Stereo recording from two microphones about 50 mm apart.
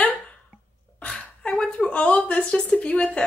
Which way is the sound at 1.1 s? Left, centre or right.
Centre.